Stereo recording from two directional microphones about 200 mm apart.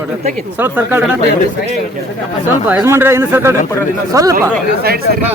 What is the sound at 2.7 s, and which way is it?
Speech, 10° right (ahead or behind).